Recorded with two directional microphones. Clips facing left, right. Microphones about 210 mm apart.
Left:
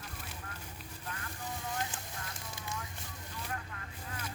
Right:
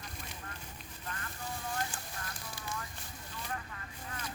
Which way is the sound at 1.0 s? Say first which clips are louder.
Even; 10° left (ahead or behind).